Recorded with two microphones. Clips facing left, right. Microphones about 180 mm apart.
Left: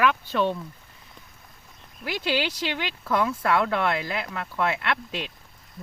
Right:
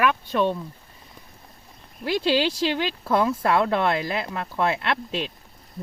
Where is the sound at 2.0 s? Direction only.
30° right (ahead or behind).